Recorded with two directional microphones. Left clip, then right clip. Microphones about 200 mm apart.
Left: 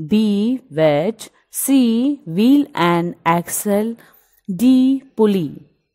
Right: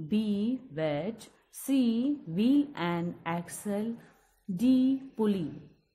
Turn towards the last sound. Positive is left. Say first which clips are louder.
# left 14 dB
turn(degrees=45)  # may be behind; listen again after turning